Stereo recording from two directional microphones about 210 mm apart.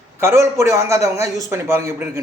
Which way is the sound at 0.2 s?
10° right (ahead or behind).